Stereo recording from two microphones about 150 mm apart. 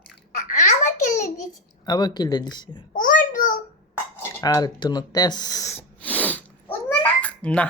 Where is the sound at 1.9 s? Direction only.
30° left (ahead or behind).